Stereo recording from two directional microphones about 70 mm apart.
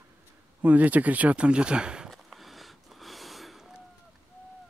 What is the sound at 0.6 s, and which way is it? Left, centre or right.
Speech, right.